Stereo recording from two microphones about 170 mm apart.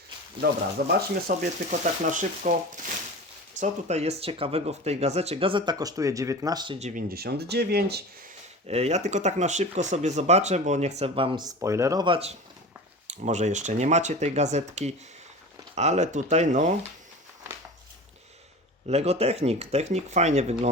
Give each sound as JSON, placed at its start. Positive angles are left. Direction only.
{"t": 0.8, "sound": "speech", "side_deg": -75}
{"t": 1.3, "sound": "speech", "side_deg": -60}
{"t": 6.7, "sound": "speech", "side_deg": -40}
{"t": 7.1, "sound": "speech", "side_deg": -70}
{"t": 8.6, "sound": "speech", "side_deg": -40}
{"t": 18.9, "sound": "speech", "side_deg": -40}